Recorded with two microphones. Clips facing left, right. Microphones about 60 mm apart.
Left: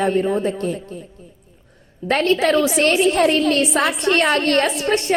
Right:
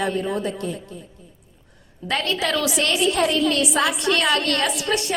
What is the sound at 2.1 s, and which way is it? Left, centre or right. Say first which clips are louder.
A woman's voice: left 7 dB; left.